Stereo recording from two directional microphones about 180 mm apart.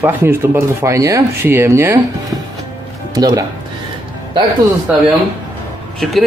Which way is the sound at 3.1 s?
20° right (ahead or behind).